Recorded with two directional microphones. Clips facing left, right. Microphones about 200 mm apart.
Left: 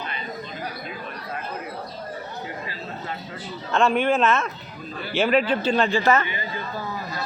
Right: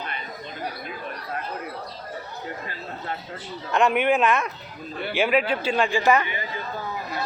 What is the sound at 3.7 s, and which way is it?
Speech, 15° right (ahead or behind).